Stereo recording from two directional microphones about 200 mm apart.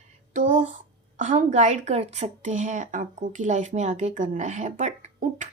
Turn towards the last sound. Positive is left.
turn(degrees=-35)  # may be behind; listen again after turning